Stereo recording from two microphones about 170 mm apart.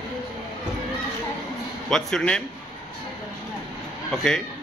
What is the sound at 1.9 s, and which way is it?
Speech, 5° left (ahead or behind).